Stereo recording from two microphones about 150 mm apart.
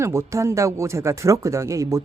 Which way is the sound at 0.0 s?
20° right (ahead or behind).